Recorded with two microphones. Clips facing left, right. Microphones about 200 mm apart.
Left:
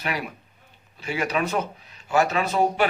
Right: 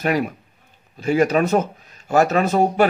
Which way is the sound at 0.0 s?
45° right (ahead or behind).